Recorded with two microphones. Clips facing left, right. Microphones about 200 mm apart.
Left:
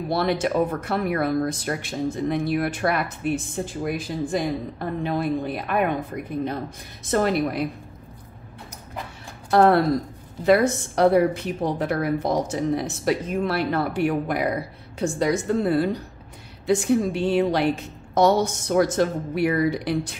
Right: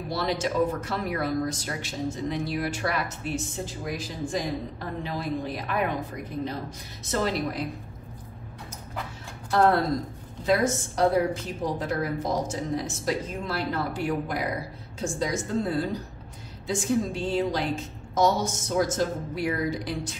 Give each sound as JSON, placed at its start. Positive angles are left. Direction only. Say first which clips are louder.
{"t": 0.1, "sound": "speech", "louder": "left 5 dB", "side_deg": 60}
{"t": 9.5, "sound": "speech", "louder": "left 5 dB", "side_deg": 60}